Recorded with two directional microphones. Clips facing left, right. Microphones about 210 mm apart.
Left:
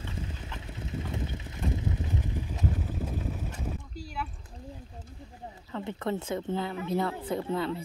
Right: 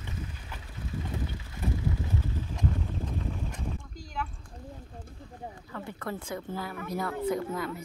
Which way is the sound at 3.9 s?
10° left (ahead or behind).